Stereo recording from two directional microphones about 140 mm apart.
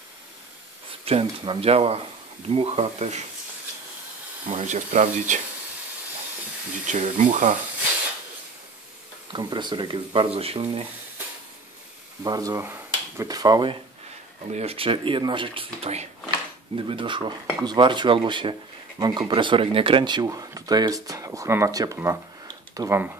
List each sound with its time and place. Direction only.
1.0 s speech: 40° right (ahead or behind)
4.6 s speech: 55° right (ahead or behind)
6.9 s speech: 65° right (ahead or behind)
9.3 s speech: 35° right (ahead or behind)
12.2 s speech: 25° right (ahead or behind)
13.3 s speech: 30° right (ahead or behind)
14.5 s speech: 45° right (ahead or behind); by 23.1 s 15° right (ahead or behind)